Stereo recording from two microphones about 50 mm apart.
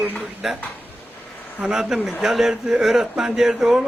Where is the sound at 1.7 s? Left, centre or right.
Centre.